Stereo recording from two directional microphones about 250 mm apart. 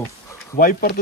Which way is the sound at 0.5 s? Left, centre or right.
Left.